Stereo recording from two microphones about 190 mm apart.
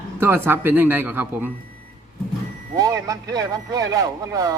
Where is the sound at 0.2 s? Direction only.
10° right (ahead or behind).